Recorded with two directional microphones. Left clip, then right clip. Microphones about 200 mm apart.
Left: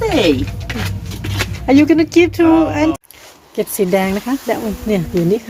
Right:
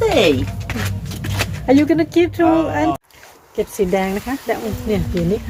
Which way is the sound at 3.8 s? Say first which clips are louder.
Left 3 dB; 15° left (ahead or behind).